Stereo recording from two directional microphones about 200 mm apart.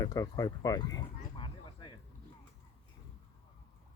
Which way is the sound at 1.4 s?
25° left (ahead or behind).